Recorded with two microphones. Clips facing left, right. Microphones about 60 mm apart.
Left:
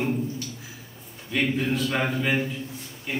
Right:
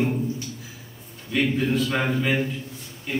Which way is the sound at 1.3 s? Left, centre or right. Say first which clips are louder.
Right 2 dB; centre.